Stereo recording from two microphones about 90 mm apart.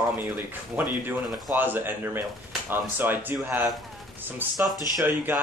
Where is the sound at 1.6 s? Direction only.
20° right (ahead or behind).